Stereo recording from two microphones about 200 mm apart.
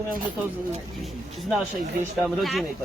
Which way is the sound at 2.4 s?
Centre (ahead or behind).